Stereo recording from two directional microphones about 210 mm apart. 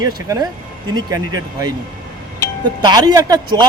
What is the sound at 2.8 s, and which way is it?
Speech, 20° right (ahead or behind).